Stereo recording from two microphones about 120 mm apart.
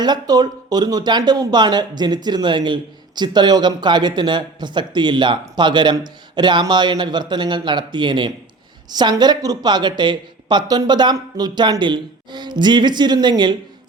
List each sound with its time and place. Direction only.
0.0 s speech: 35° right (ahead or behind)